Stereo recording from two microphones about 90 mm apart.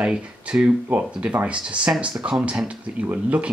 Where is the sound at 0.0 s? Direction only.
10° right (ahead or behind).